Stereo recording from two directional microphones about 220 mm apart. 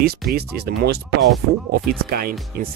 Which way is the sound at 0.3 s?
45° right (ahead or behind).